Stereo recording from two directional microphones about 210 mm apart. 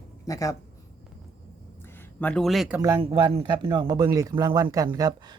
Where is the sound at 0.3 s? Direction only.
15° left (ahead or behind).